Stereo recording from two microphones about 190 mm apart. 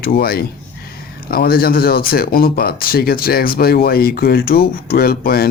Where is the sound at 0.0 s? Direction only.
55° left (ahead or behind).